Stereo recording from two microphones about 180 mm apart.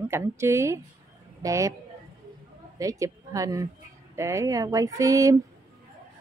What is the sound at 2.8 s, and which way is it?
Speech, 20° right (ahead or behind).